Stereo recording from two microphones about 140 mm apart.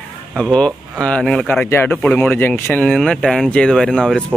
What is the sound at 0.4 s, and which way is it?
Speech, 5° left (ahead or behind).